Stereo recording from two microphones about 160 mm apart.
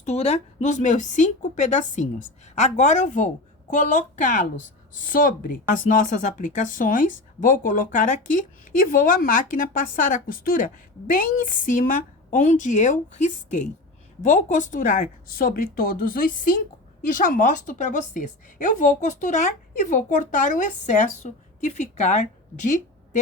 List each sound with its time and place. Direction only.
0.0 s a woman's voice: 45° left (ahead or behind)